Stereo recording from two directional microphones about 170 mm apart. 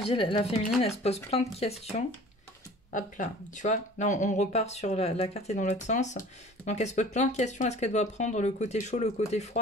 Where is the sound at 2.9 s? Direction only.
50° left (ahead or behind).